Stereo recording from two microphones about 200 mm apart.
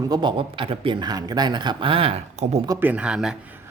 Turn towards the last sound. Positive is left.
turn(degrees=-5)  # may be behind; listen again after turning